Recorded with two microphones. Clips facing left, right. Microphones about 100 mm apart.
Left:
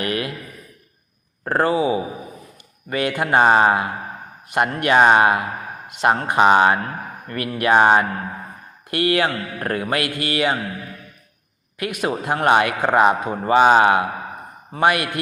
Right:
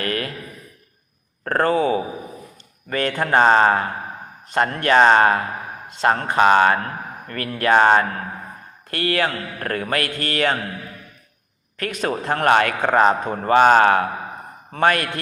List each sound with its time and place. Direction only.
0.0 s a man's voice: 20° left (ahead or behind)
1.5 s a man's voice: 15° left (ahead or behind)
11.8 s a man's voice: 15° left (ahead or behind)